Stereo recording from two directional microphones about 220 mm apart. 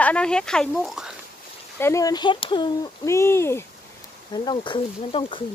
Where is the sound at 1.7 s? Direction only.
10° left (ahead or behind).